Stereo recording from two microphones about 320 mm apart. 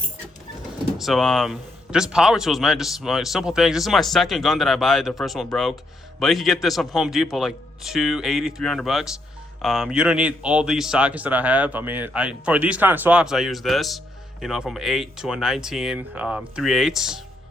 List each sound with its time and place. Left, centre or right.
0.9 s speech: centre